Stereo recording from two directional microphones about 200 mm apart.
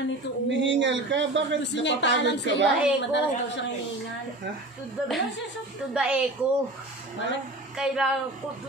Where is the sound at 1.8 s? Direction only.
60° left (ahead or behind).